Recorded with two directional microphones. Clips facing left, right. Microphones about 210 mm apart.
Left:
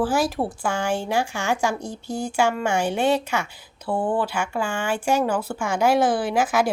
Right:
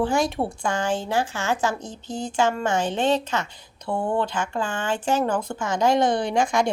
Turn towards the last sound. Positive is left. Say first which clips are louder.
# left 1 dB
turn(degrees=5)  # may be behind; listen again after turning